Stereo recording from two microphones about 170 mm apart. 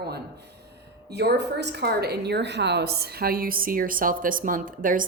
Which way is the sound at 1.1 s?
75° right (ahead or behind).